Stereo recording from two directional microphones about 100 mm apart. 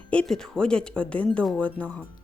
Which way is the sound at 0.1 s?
10° left (ahead or behind).